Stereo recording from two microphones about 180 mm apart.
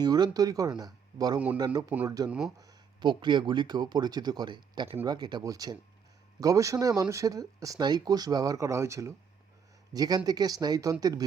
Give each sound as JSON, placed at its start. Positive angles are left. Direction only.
{"t": 0.0, "sound": "speech", "side_deg": -20}